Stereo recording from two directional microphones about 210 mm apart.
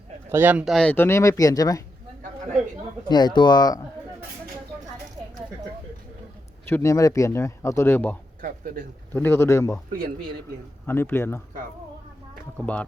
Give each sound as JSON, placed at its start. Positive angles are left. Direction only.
{"t": 0.3, "sound": "speech", "side_deg": -10}
{"t": 3.1, "sound": "speech", "side_deg": 20}
{"t": 6.7, "sound": "speech", "side_deg": 15}
{"t": 8.4, "sound": "speech", "side_deg": -40}
{"t": 9.1, "sound": "speech", "side_deg": 10}
{"t": 10.8, "sound": "speech", "side_deg": 10}
{"t": 12.6, "sound": "speech", "side_deg": 5}